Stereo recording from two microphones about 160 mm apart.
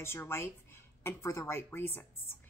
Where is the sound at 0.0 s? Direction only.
15° left (ahead or behind).